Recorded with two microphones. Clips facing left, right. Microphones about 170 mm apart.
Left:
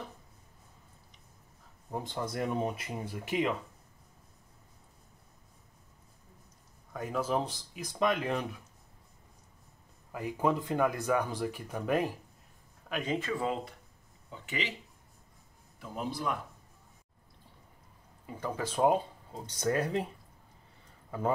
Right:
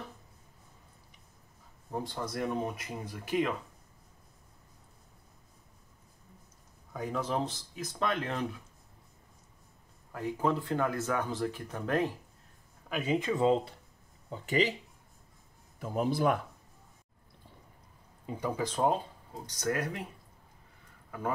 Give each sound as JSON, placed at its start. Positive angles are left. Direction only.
{"t": 2.0, "sound": "speech", "side_deg": 25}
{"t": 6.9, "sound": "speech", "side_deg": 5}
{"t": 10.1, "sound": "speech", "side_deg": 15}
{"t": 12.9, "sound": "speech", "side_deg": -10}
{"t": 13.3, "sound": "speech", "side_deg": -25}
{"t": 14.3, "sound": "speech", "side_deg": -40}
{"t": 15.8, "sound": "a man's voice", "side_deg": -50}
{"t": 18.3, "sound": "speech", "side_deg": -20}
{"t": 18.6, "sound": "speech", "side_deg": 10}
{"t": 19.4, "sound": "speech", "side_deg": 25}